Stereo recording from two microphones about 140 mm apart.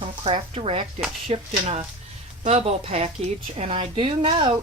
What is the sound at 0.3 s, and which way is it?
A woman's voice, 45° right (ahead or behind).